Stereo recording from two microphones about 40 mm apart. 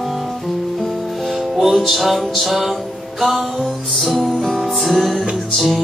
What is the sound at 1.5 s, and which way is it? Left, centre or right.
Music, centre.